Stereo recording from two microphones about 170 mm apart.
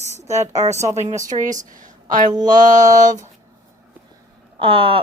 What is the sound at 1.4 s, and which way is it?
Speech, 50° right (ahead or behind).